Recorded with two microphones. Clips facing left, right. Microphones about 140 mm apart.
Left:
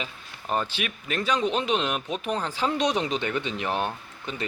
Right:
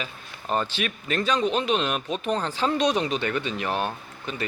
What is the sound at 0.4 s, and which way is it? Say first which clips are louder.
Speech: right 2 dB; 10° left (ahead or behind).